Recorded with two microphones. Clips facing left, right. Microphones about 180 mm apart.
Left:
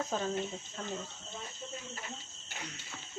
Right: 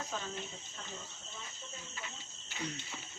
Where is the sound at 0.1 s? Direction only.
45° left (ahead or behind).